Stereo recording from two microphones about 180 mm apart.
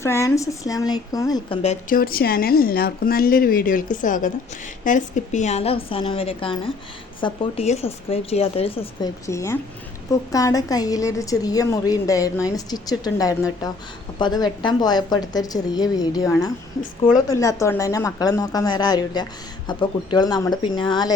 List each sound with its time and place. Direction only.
0.0 s speech: 15° left (ahead or behind)
1.6 s a woman's voice: 45° left (ahead or behind); by 21.1 s 25° left (ahead or behind)